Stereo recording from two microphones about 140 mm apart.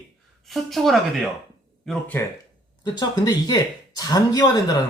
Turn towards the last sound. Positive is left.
turn(degrees=30)  # may be behind; listen again after turning